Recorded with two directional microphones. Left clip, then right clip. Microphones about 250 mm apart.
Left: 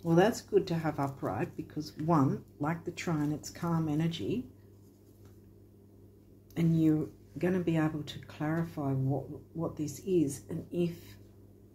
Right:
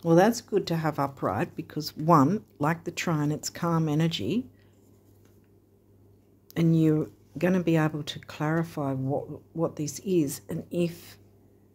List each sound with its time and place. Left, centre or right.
0.0 s speech: right
6.5 s speech: right